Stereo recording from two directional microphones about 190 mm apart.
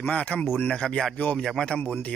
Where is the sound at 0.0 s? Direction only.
5° left (ahead or behind).